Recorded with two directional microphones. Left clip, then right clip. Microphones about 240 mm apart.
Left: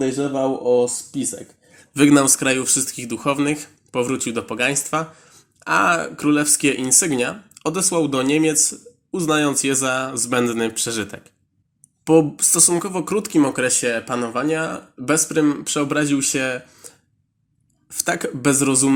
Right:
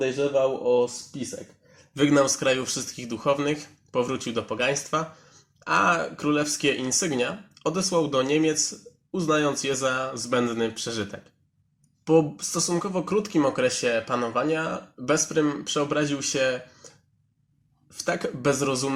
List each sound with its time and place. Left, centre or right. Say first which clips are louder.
0.6 s speech: left 5 dB; left